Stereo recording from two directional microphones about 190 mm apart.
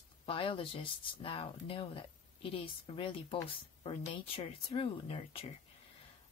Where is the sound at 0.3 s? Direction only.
30° left (ahead or behind).